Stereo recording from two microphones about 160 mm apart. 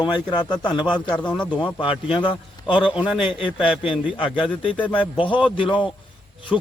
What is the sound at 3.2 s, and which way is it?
Speech, 35° left (ahead or behind).